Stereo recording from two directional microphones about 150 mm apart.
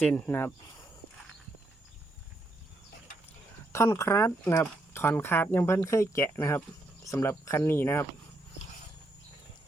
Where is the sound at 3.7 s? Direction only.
20° left (ahead or behind).